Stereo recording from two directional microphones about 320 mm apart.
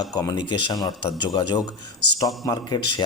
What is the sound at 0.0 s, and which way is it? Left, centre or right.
A man's voice, centre.